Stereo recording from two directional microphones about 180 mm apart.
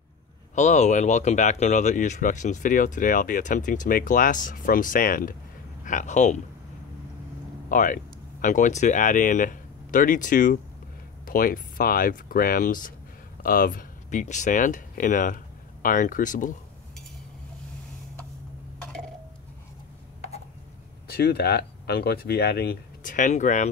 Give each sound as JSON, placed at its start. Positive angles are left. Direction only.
{"t": 0.6, "sound": "speech", "side_deg": 40}
{"t": 7.7, "sound": "speech", "side_deg": 50}
{"t": 18.8, "sound": "a sound", "side_deg": 5}
{"t": 21.1, "sound": "speech", "side_deg": 60}